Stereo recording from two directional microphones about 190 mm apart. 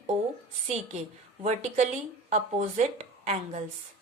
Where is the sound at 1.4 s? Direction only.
35° right (ahead or behind).